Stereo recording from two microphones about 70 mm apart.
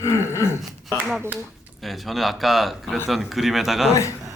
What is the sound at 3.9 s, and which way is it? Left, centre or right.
Speech, left.